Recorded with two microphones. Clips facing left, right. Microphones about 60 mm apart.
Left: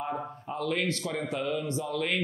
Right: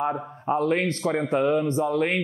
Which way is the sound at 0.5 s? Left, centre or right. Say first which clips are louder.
Right 8 dB; right.